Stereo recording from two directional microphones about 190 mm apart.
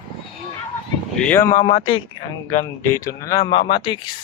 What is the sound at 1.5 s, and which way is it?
Speech, 25° left (ahead or behind).